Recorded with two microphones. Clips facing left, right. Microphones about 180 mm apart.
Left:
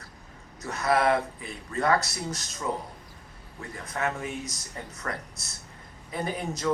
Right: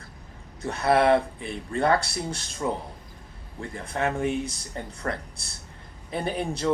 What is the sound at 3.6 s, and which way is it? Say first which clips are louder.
Speech: right 3 dB; 30° right (ahead or behind).